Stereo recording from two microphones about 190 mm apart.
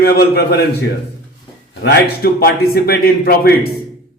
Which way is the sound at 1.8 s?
55° left (ahead or behind).